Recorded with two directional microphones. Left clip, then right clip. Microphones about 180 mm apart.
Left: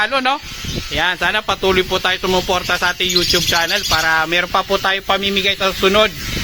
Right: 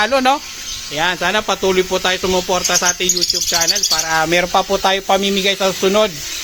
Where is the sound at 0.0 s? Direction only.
10° right (ahead or behind).